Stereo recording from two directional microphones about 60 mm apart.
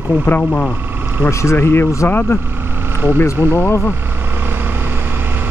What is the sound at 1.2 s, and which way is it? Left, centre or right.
Speech, left.